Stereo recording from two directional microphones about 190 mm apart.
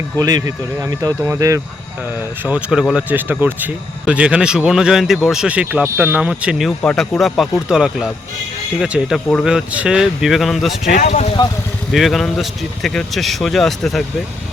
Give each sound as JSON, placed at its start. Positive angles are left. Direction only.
{"t": 0.2, "sound": "speech", "side_deg": -20}
{"t": 10.8, "sound": "speech", "side_deg": 40}
{"t": 11.9, "sound": "speech", "side_deg": 0}